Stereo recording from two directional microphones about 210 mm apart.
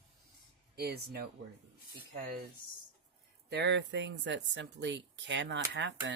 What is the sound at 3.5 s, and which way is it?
Speech, 55° right (ahead or behind).